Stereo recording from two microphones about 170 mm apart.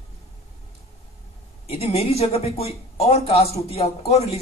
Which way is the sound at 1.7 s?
35° left (ahead or behind).